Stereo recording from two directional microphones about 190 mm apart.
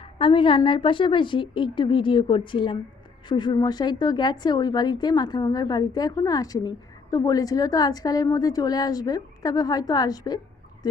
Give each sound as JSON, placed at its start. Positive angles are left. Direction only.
{"t": 0.0, "sound": "a woman's voice", "side_deg": 30}